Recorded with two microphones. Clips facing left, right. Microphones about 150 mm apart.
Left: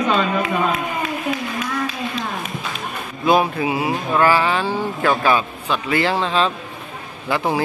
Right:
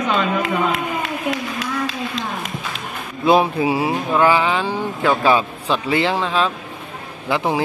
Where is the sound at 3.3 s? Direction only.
25° right (ahead or behind).